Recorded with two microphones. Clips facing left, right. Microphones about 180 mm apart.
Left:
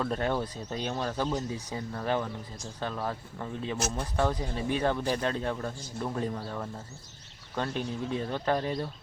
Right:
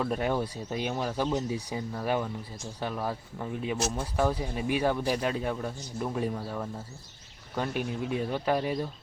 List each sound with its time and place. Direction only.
0.0 s speech: 10° right (ahead or behind)